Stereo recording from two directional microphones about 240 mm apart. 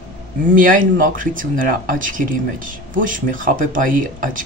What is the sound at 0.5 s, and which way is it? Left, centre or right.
Speech, right.